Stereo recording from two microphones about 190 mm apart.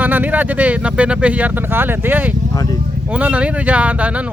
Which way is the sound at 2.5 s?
20° left (ahead or behind).